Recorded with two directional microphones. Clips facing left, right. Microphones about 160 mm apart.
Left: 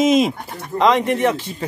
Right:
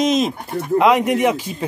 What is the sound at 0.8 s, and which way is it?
Speech, 10° right (ahead or behind).